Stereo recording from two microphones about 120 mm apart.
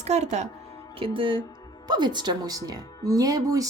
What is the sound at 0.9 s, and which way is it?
Speech, 45° right (ahead or behind).